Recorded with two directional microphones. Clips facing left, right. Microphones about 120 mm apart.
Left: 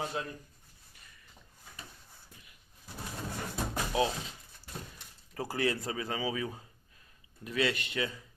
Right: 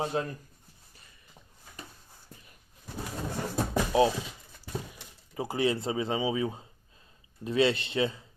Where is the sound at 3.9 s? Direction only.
30° right (ahead or behind).